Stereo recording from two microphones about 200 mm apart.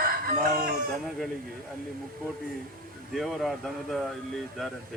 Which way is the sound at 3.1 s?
Centre (ahead or behind).